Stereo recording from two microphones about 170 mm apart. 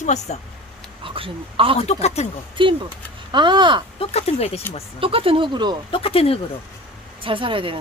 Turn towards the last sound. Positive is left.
turn(degrees=-30)  # may be behind; listen again after turning